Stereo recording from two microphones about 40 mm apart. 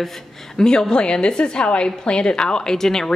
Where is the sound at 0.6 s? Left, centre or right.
Centre.